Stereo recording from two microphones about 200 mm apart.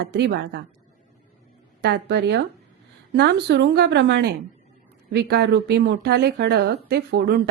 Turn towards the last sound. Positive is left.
turn(degrees=-55)  # may be behind; listen again after turning